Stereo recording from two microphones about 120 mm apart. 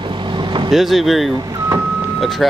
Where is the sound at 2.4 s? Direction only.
Centre (ahead or behind).